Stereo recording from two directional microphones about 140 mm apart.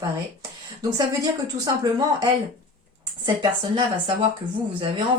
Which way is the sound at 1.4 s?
30° right (ahead or behind).